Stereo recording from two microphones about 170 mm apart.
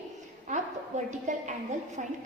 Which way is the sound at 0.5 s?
45° right (ahead or behind).